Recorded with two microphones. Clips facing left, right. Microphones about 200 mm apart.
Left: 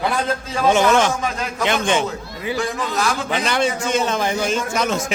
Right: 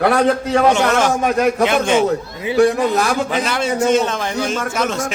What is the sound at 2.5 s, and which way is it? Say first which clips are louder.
Speech: right 10 dB; 55° right (ahead or behind).